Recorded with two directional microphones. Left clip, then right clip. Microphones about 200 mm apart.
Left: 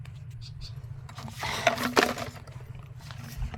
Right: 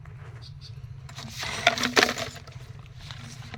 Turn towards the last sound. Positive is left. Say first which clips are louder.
# right 3 dB
turn(degrees=0)  # may be behind; listen again after turning